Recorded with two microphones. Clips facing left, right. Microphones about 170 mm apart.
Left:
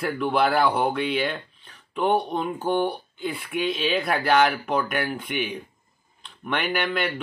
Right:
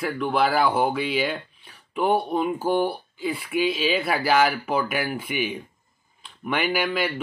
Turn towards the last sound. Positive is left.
turn(degrees=-5)  # may be behind; listen again after turning